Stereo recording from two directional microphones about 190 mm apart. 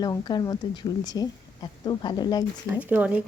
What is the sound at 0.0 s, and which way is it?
Speech, 20° left (ahead or behind).